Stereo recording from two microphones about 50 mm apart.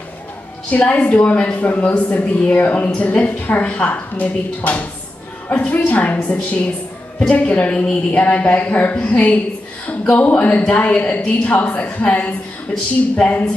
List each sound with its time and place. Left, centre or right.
0.7 s a woman's voice: left